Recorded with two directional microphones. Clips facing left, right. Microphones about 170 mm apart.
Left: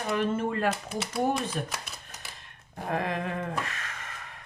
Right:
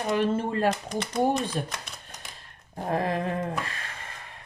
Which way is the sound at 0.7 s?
5° left (ahead or behind).